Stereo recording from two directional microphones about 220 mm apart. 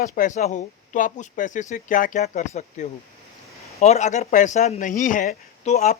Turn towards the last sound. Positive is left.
turn(degrees=30)  # may be behind; listen again after turning